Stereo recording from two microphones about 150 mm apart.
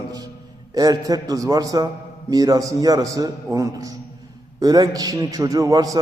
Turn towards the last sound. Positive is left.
turn(degrees=-25)  # may be behind; listen again after turning